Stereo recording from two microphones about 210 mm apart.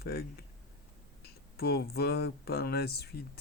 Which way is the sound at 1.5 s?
50° left (ahead or behind).